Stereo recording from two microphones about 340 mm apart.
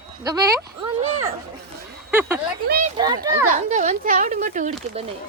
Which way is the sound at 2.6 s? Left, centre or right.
Right.